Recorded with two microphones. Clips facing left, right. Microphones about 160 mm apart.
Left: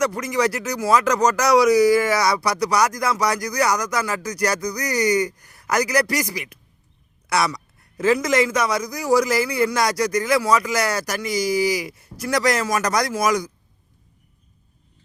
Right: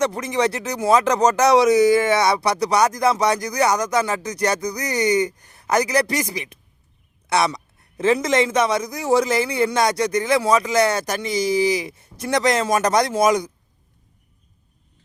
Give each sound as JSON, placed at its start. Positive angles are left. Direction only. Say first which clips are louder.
{"t": 0.0, "sound": "speech", "louder": "even", "side_deg": -25}